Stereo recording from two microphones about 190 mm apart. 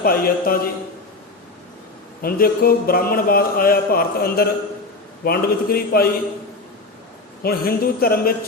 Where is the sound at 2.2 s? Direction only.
50° left (ahead or behind).